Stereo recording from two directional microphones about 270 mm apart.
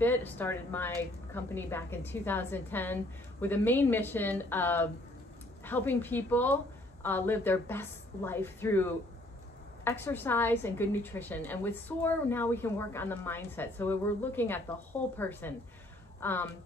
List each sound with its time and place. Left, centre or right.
0.0 s a woman's voice: centre